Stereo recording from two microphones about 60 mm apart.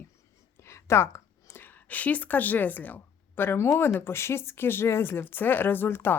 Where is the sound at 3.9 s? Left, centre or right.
Left.